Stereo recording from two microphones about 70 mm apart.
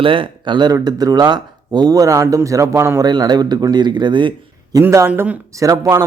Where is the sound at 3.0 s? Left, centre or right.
Right.